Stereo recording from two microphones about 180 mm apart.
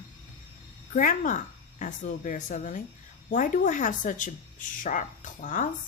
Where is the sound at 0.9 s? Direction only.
50° left (ahead or behind).